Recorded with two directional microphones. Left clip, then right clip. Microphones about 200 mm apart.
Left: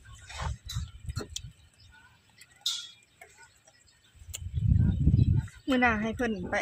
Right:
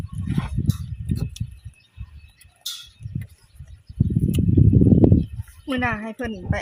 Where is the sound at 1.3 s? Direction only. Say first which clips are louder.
Even; 15° left (ahead or behind).